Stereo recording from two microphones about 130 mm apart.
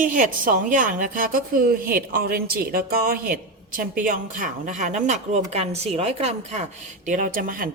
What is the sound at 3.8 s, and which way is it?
Speech, 90° right.